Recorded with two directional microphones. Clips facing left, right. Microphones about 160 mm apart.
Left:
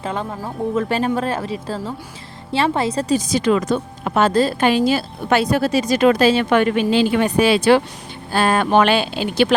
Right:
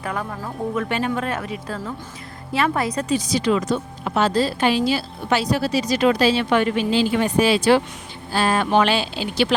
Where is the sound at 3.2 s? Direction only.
50° left (ahead or behind).